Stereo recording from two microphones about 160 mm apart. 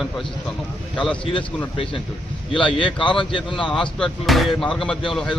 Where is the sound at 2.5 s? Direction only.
30° left (ahead or behind).